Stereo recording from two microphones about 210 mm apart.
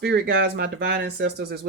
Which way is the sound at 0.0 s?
50° right (ahead or behind).